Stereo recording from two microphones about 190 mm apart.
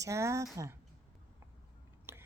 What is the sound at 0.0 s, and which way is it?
Speech, 15° right (ahead or behind).